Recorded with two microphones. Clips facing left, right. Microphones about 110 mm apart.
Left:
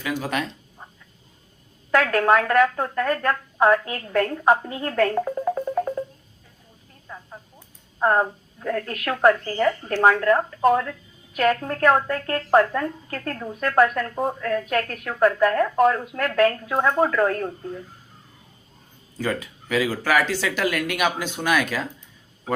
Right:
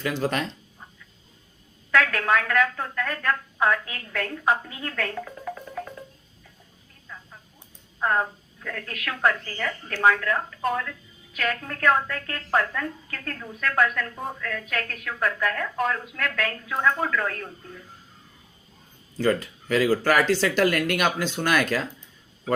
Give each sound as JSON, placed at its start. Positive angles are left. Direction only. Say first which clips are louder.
{"t": 0.0, "sound": "speech", "louder": "even", "side_deg": 10}
{"t": 1.9, "sound": "a woman's voice", "louder": "left 4 dB", "side_deg": 40}
{"t": 7.1, "sound": "a sound", "louder": "left 4 dB", "side_deg": 35}
{"t": 7.9, "sound": "a woman's voice", "louder": "left 5 dB", "side_deg": 35}
{"t": 19.2, "sound": "speech", "louder": "right 3 dB", "side_deg": 5}